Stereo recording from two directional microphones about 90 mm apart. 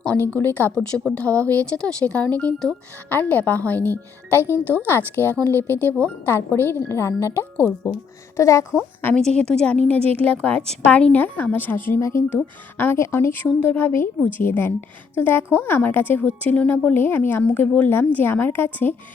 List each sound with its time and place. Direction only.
0.3 s a woman's voice: 20° left (ahead or behind)
9.1 s a woman's voice: 10° left (ahead or behind); by 18.9 s 25° left (ahead or behind)